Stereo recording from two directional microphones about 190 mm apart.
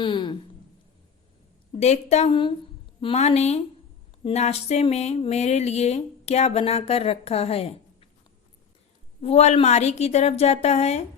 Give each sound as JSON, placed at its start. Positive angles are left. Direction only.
{"t": 0.0, "sound": "speech", "side_deg": 25}
{"t": 1.8, "sound": "speech", "side_deg": 35}
{"t": 9.2, "sound": "speech", "side_deg": 35}